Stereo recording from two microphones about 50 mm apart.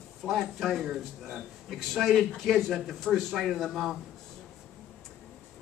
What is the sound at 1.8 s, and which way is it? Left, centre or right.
Speech, centre.